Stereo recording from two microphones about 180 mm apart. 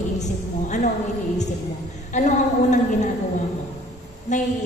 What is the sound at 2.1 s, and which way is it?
Speech, 40° left (ahead or behind).